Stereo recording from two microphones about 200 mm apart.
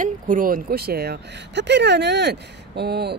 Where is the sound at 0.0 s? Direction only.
40° right (ahead or behind).